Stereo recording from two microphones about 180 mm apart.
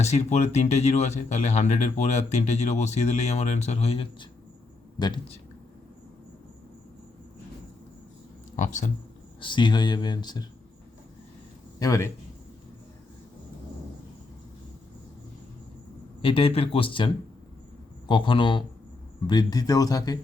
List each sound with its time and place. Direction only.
0.0 s speech: 35° left (ahead or behind)
8.5 s speech: 45° left (ahead or behind)
9.4 s speech: 25° left (ahead or behind)
11.8 s speech: 15° left (ahead or behind)
16.2 s speech: 30° left (ahead or behind)
18.1 s speech: 25° left (ahead or behind)